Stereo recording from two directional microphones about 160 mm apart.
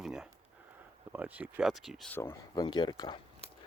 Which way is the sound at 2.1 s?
15° left (ahead or behind).